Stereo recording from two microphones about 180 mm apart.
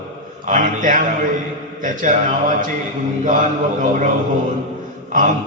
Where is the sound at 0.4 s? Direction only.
45° right (ahead or behind).